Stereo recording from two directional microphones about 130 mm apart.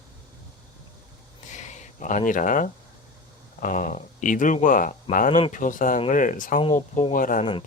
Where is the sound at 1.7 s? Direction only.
75° left (ahead or behind).